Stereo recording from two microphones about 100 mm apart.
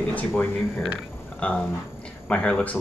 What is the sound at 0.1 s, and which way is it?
Speech, 20° left (ahead or behind).